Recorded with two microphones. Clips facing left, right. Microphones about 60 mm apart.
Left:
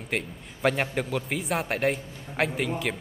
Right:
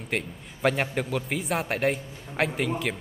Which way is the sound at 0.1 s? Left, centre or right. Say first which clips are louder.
Even; centre.